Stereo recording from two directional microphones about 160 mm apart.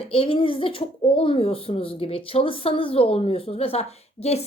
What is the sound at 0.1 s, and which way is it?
Speech, 35° left (ahead or behind).